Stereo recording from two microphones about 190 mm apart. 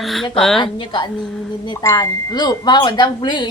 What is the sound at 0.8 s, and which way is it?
Speech, 25° left (ahead or behind).